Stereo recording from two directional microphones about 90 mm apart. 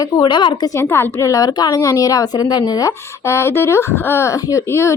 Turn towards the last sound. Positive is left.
turn(degrees=30)  # may be behind; listen again after turning